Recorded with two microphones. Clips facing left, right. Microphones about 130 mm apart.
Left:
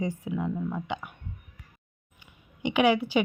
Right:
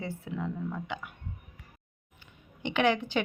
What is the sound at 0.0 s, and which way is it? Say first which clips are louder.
A woman's voice: left 5 dB; 15° left (ahead or behind).